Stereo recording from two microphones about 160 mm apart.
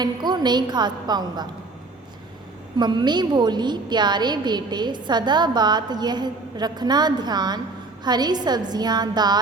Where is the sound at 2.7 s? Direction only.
30° right (ahead or behind).